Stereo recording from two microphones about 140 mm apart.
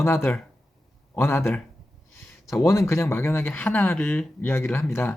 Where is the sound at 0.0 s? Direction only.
20° left (ahead or behind).